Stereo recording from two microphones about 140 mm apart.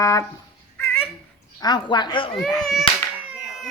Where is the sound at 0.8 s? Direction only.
20° left (ahead or behind).